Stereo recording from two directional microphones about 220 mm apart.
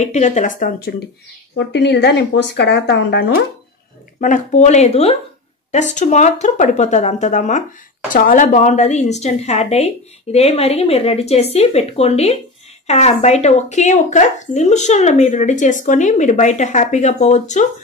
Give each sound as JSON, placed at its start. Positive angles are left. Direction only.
{"t": 0.0, "sound": "speech", "side_deg": 30}
{"t": 4.2, "sound": "speech", "side_deg": 35}